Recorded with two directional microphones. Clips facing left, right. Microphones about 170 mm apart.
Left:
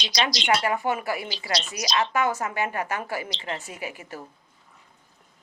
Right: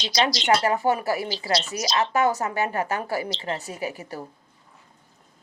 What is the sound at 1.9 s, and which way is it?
Speech, 15° left (ahead or behind).